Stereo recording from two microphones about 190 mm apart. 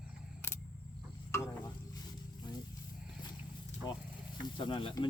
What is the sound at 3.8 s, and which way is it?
Sizzle, 20° left (ahead or behind).